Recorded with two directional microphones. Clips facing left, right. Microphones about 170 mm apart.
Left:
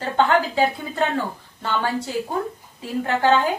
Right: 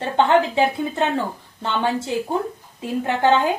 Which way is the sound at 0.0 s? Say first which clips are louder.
Right 2 dB; 25° right (ahead or behind).